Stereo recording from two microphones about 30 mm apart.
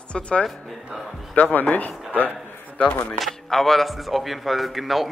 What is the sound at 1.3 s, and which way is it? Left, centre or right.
Speech, left.